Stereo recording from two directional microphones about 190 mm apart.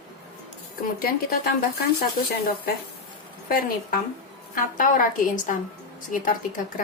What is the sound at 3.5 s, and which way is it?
A woman's voice, 50° left (ahead or behind).